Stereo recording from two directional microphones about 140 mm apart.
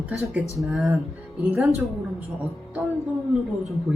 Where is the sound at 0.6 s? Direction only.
Centre (ahead or behind).